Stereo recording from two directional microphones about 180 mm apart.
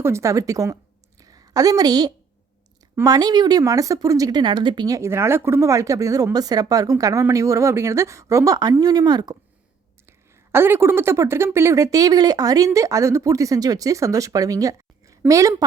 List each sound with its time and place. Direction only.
0.0 s speech: 15° right (ahead or behind)
1.2 s a sound: 20° right (ahead or behind)
2.9 s speech: 20° right (ahead or behind)